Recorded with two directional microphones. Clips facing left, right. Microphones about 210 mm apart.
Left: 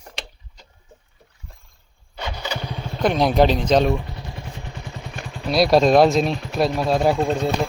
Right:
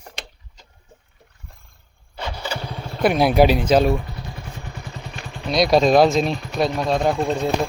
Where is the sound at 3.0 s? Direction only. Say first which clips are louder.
Right 2 dB; 10° right (ahead or behind).